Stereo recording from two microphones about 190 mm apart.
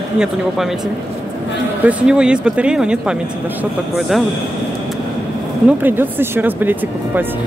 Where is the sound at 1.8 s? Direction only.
5° right (ahead or behind).